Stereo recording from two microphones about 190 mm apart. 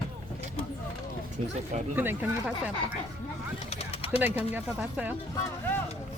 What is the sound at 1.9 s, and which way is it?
Speech, 10° right (ahead or behind).